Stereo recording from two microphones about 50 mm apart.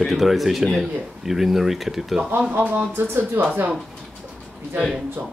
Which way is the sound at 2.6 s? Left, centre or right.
Right.